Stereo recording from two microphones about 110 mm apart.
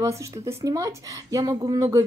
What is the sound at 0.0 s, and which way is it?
Speech, 25° right (ahead or behind).